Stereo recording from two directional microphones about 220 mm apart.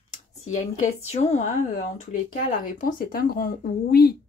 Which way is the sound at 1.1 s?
30° left (ahead or behind).